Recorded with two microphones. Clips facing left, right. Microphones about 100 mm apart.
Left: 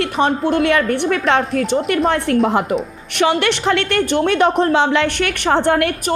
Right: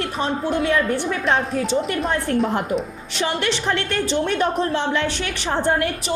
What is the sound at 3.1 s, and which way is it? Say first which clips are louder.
A woman's voice: left 7 dB; 75° left (ahead or behind).